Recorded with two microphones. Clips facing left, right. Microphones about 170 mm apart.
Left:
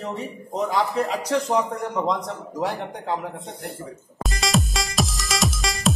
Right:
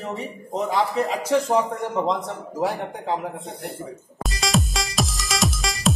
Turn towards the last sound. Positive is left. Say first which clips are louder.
# even
turn(degrees=0)  # may be behind; listen again after turning